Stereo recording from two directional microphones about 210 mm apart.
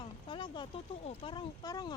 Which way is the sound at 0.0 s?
20° left (ahead or behind).